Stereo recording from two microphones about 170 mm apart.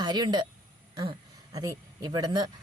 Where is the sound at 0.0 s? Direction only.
25° right (ahead or behind).